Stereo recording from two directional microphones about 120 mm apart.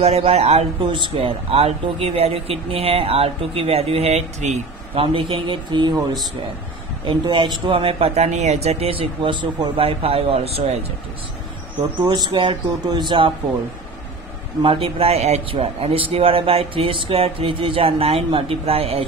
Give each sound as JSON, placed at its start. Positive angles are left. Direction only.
{"t": 0.0, "sound": "speech", "side_deg": -60}
{"t": 0.8, "sound": "speech", "side_deg": -45}
{"t": 4.9, "sound": "a man's voice", "side_deg": -50}
{"t": 7.1, "sound": "a man's voice", "side_deg": -40}
{"t": 8.3, "sound": "speech", "side_deg": -75}
{"t": 12.0, "sound": "speech", "side_deg": -35}
{"t": 14.6, "sound": "a man's voice", "side_deg": -45}